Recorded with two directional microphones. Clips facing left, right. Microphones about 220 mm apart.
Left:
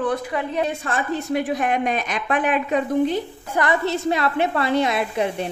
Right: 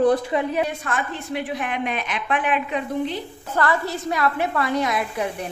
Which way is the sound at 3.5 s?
20° left (ahead or behind).